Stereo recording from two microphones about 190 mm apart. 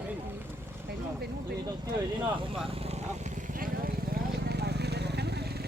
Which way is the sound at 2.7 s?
30° right (ahead or behind).